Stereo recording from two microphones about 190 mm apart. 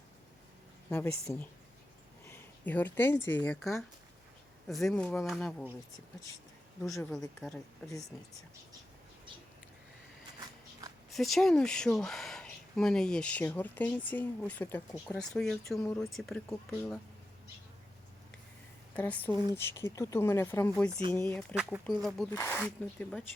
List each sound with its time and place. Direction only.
0.9 s speech: 10° left (ahead or behind)
2.2 s a sound: 10° left (ahead or behind)
3.2 s speech: 10° left (ahead or behind)
7.4 s speech: centre (ahead or behind)
10.4 s a sound: 20° right (ahead or behind)
11.1 s speech: centre (ahead or behind)
18.9 s speech: 10° left (ahead or behind)
21.5 s speech: 5° right (ahead or behind)
22.3 s speech: 10° left (ahead or behind)